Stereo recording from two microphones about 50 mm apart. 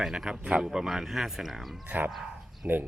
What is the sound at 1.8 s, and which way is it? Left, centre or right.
Speech, right.